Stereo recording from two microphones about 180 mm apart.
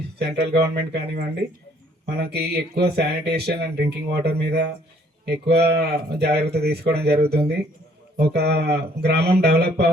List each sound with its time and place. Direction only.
0.2 s speech: 65° right (ahead or behind)